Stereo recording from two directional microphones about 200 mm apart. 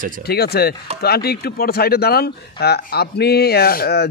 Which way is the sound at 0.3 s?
50° left (ahead or behind).